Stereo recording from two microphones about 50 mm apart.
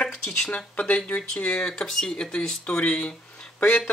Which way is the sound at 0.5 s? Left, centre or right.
Left.